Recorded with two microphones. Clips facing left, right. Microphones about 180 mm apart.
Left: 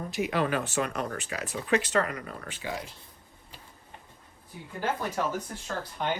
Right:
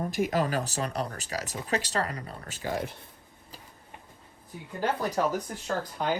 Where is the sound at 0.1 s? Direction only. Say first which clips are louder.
Left 2 dB; 45° right (ahead or behind).